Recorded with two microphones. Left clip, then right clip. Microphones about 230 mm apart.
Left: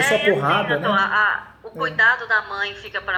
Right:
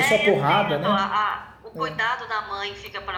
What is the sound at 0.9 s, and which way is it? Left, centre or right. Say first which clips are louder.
Speech: left 5 dB; right.